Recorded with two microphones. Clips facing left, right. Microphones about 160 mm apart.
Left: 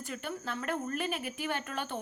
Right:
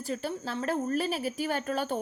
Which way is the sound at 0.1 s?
35° right (ahead or behind).